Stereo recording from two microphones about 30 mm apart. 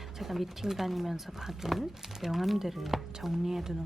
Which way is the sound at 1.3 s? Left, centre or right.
Centre.